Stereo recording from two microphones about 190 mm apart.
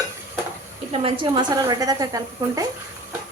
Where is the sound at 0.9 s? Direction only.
30° right (ahead or behind).